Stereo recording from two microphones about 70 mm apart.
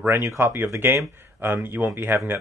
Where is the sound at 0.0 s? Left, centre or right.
Right.